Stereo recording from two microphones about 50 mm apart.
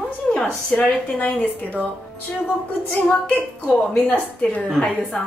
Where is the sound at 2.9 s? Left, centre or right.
Left.